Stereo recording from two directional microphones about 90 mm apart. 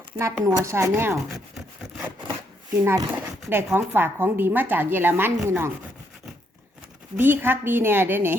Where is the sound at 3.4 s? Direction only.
25° right (ahead or behind).